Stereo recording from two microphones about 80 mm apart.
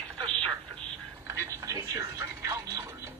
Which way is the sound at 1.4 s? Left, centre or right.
Right.